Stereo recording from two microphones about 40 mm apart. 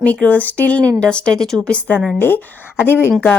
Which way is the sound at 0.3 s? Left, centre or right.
Left.